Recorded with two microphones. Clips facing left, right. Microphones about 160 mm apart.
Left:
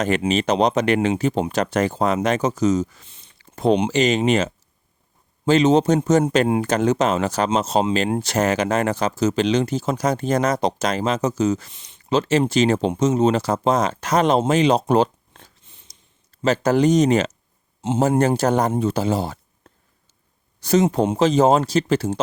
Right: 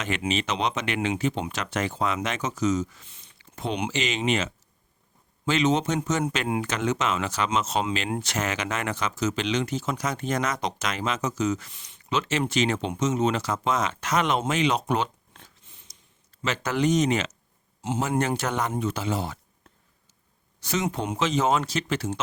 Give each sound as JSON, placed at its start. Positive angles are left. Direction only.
{"t": 0.0, "sound": "speech", "side_deg": 40}
{"t": 15.6, "sound": "a sound", "side_deg": 25}
{"t": 16.4, "sound": "speech", "side_deg": 35}